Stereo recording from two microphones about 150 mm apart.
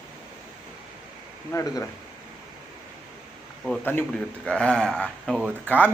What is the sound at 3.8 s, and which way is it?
A man's voice, 10° left (ahead or behind).